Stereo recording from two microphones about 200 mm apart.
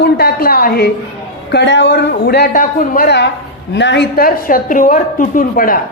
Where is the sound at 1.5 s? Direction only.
60° left (ahead or behind); by 5.7 s 45° left (ahead or behind).